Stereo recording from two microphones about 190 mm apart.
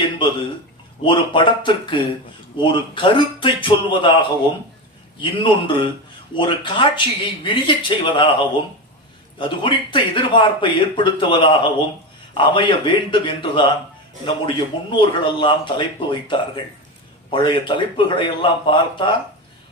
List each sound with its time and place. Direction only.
1.0 s speech: 25° left (ahead or behind)
5.2 s speech: 25° left (ahead or behind)
17.3 s speech: 25° left (ahead or behind)